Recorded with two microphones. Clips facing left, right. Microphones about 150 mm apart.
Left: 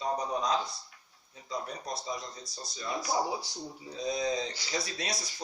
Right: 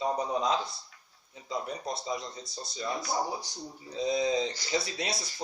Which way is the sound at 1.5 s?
25° right (ahead or behind).